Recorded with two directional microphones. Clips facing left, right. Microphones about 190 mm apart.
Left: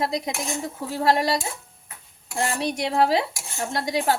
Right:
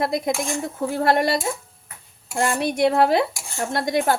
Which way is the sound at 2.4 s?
55° right (ahead or behind).